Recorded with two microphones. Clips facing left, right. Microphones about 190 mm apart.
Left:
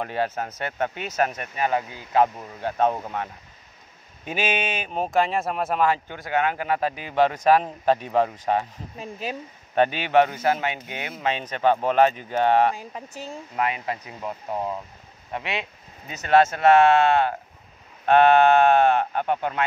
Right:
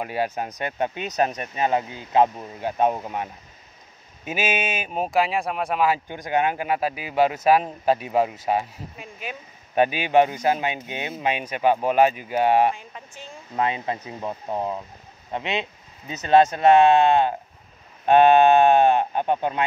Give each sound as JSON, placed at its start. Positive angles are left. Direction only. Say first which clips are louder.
{"t": 0.0, "sound": "speech", "louder": "even", "side_deg": -10}
{"t": 5.9, "sound": "speech", "louder": "right 1 dB", "side_deg": -15}
{"t": 8.9, "sound": "speech", "louder": "left 6 dB", "side_deg": 35}
{"t": 9.8, "sound": "speech", "louder": "right 1 dB", "side_deg": -10}
{"t": 12.7, "sound": "speech", "louder": "left 5 dB", "side_deg": 40}
{"t": 13.6, "sound": "speech", "louder": "right 2 dB", "side_deg": -25}